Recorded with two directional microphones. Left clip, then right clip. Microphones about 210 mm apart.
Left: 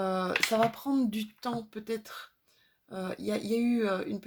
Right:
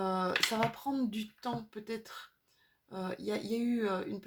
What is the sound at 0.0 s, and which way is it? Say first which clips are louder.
Speech: left 2 dB; 30° left (ahead or behind).